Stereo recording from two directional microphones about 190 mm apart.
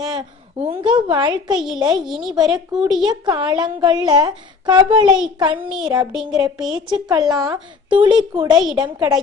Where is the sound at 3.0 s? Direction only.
25° right (ahead or behind).